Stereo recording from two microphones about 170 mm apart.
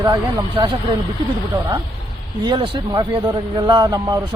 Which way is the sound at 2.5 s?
25° right (ahead or behind).